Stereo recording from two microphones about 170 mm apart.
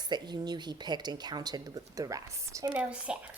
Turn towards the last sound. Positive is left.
turn(degrees=-5)  # may be behind; listen again after turning